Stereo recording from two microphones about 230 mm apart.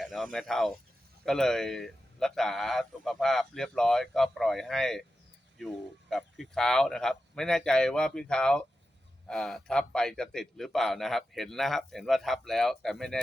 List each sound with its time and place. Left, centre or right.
0.0 s a man's voice: centre